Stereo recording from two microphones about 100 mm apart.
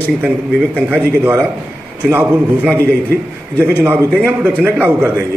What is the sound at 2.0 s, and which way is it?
Speech, 15° right (ahead or behind).